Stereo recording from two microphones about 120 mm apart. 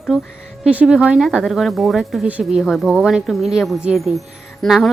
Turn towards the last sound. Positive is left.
turn(degrees=0)  # may be behind; listen again after turning